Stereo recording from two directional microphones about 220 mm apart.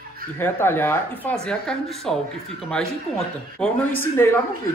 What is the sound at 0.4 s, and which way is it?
Speech, 10° left (ahead or behind).